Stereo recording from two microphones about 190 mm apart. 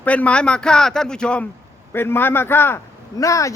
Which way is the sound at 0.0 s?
5° left (ahead or behind).